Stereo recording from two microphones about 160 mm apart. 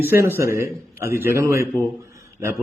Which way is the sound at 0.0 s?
15° right (ahead or behind).